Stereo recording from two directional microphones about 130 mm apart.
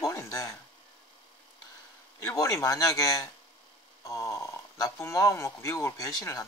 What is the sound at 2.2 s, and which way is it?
Speech, 25° left (ahead or behind).